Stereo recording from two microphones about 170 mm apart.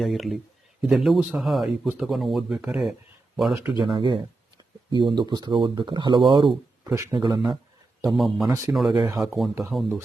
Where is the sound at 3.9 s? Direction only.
30° right (ahead or behind).